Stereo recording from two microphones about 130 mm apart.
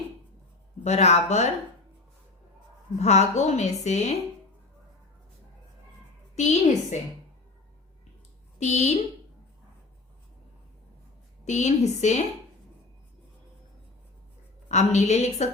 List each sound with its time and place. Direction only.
0.9 s a woman's voice: 60° left (ahead or behind)
3.0 s a woman's voice: 60° left (ahead or behind)
6.3 s a woman's voice: 65° left (ahead or behind)
8.5 s speech: 60° left (ahead or behind)
11.4 s a woman's voice: 60° left (ahead or behind)
14.7 s a woman's voice: 60° left (ahead or behind)